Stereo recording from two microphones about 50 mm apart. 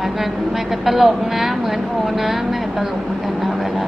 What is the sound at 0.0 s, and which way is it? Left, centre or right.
A woman's voice, centre.